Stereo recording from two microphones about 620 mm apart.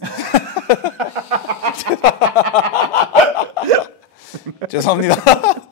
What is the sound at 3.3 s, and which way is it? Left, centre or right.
Hiccup, left.